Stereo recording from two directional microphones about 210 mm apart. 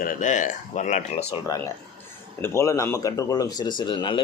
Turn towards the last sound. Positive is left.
turn(degrees=20)  # may be behind; listen again after turning